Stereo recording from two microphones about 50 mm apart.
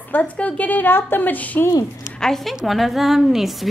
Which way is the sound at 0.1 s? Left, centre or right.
Left.